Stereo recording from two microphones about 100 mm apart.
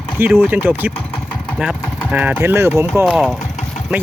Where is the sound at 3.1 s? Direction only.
5° right (ahead or behind).